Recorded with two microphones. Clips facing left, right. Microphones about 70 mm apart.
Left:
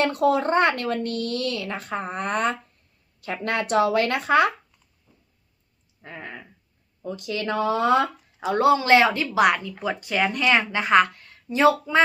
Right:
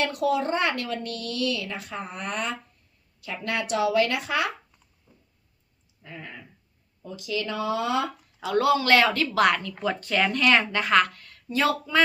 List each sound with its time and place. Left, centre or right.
0.0 s speech: left
6.0 s speech: left
8.4 s speech: left